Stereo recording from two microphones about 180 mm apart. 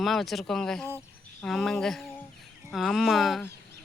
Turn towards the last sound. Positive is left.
turn(degrees=0)  # may be behind; listen again after turning